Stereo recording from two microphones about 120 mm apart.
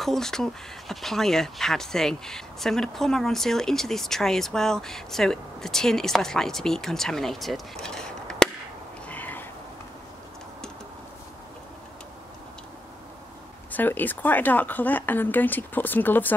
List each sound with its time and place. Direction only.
0.0 s speech: 5° left (ahead or behind)
9.0 s frog: 15° left (ahead or behind)
13.7 s speech: 15° left (ahead or behind)